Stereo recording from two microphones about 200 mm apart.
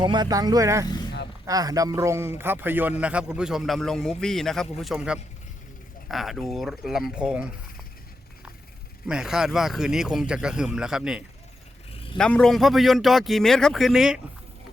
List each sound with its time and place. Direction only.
0.0 s a man's voice: 20° right (ahead or behind); by 7.4 s 5° right (ahead or behind)
9.0 s a man's voice: 5° right (ahead or behind)